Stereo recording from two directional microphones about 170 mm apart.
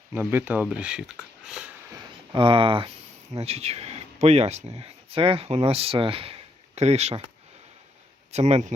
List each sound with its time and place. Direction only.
0.1 s speech: 10° right (ahead or behind)
1.5 s a sound: 5° right (ahead or behind)
2.3 s speech: 30° right (ahead or behind)
8.3 s speech: 40° right (ahead or behind)